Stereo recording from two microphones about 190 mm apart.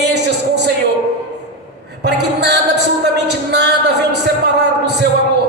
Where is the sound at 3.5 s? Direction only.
60° right (ahead or behind).